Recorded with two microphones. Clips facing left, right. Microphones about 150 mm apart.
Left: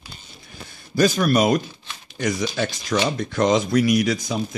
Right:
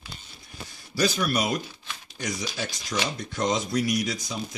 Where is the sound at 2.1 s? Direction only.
65° left (ahead or behind); by 4.2 s 90° left.